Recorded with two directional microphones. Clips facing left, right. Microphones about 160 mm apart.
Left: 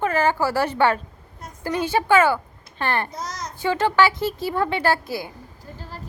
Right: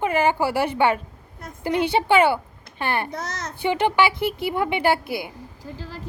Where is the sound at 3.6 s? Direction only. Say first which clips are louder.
Left 1 dB; 15° right (ahead or behind).